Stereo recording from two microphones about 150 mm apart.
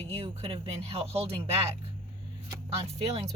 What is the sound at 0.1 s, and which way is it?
Speech, 40° right (ahead or behind).